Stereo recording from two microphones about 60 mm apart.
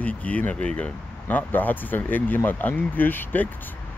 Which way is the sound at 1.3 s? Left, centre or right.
Left.